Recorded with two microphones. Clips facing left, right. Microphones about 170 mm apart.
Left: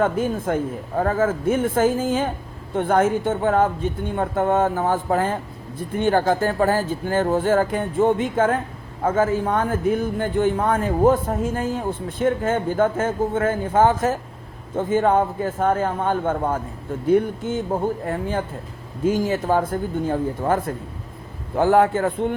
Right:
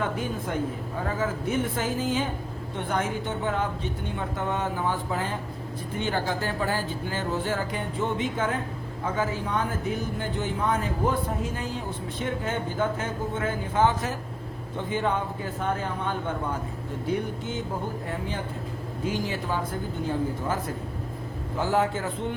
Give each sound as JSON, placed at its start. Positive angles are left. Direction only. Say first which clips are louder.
{"t": 0.0, "sound": "a man's voice", "louder": "left 8 dB", "side_deg": 50}